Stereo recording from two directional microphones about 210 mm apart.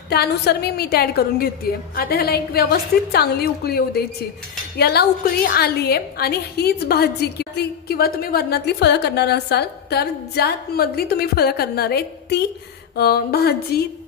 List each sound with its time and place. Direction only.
0.1 s a woman's voice: 50° left (ahead or behind)